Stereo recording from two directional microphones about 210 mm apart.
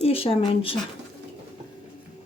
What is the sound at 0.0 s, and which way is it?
Speech, 25° left (ahead or behind).